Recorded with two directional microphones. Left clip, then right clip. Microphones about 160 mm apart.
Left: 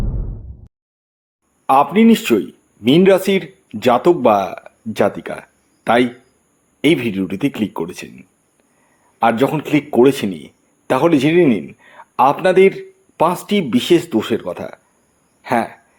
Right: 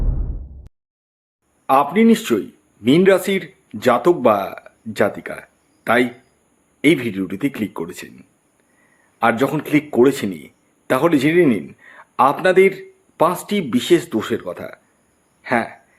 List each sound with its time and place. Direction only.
1.6 s speech: 20° left (ahead or behind)
9.2 s speech: 10° left (ahead or behind)
15.4 s a sound: 15° left (ahead or behind)